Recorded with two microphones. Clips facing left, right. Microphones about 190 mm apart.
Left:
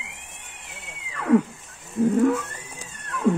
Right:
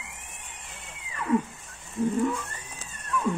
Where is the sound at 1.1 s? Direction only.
70° left (ahead or behind).